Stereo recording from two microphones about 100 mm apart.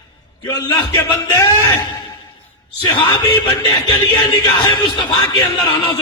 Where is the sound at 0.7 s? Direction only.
50° left (ahead or behind).